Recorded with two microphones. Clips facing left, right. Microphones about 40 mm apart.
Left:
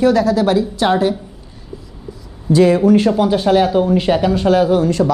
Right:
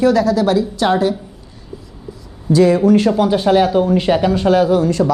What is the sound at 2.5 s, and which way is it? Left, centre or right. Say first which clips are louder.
Speech: even; left.